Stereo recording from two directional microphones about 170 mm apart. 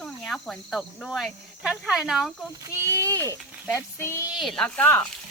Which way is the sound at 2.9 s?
15° right (ahead or behind).